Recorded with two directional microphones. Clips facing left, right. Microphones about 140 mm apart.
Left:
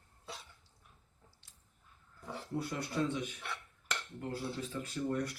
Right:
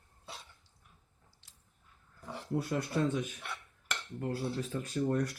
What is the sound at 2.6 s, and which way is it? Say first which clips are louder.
Speech: right 3 dB; 45° right (ahead or behind).